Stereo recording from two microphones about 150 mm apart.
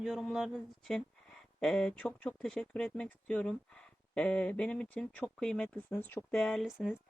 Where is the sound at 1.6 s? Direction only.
5° left (ahead or behind).